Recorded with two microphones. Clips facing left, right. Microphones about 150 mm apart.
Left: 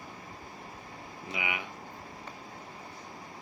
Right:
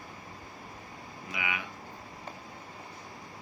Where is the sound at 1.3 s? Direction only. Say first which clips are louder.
Even; 20° left (ahead or behind).